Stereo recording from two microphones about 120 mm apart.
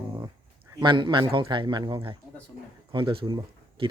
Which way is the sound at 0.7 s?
40° right (ahead or behind).